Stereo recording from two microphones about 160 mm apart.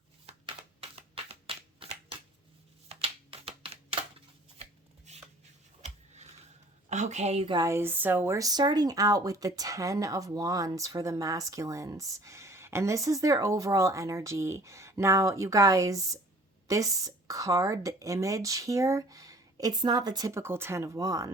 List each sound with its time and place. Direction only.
0.3 s a sound: 35° right (ahead or behind)
4.5 s shuffling cards: 40° right (ahead or behind)
6.9 s a woman's voice: 45° right (ahead or behind)
7.5 s speech: 20° right (ahead or behind)